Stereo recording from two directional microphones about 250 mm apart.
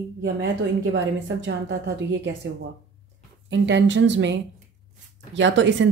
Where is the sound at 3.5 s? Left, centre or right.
Right.